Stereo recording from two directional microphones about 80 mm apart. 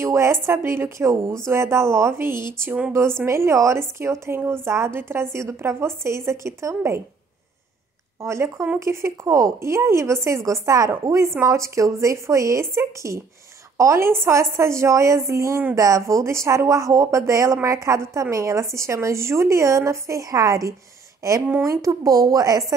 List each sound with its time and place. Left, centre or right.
0.0 s a woman's voice: right
8.2 s a woman's voice: right
21.4 s speech: right
21.6 s a woman's voice: right